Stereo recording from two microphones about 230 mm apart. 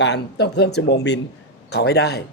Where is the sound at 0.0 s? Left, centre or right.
Left.